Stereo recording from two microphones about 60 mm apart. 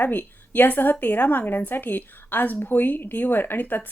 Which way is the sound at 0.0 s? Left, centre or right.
Left.